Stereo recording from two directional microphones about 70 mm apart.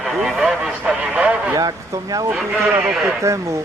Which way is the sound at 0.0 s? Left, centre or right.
Centre.